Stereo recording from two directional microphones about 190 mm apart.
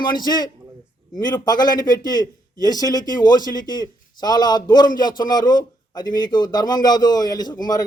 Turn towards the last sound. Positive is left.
turn(degrees=20)  # may be behind; listen again after turning